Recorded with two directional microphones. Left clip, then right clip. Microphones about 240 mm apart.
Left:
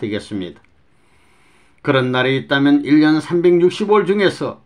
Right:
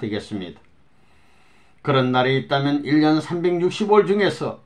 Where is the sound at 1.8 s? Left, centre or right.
Left.